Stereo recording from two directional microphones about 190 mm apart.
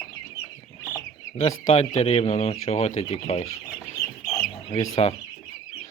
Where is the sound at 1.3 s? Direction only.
35° left (ahead or behind).